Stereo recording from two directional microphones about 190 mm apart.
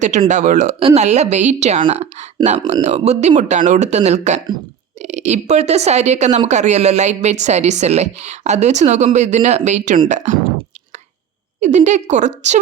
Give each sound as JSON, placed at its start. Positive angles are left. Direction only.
{"t": 0.0, "sound": "speech", "side_deg": -40}
{"t": 11.6, "sound": "speech", "side_deg": -40}